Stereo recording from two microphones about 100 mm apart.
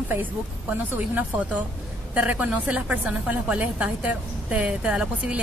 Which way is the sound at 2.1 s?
15° right (ahead or behind).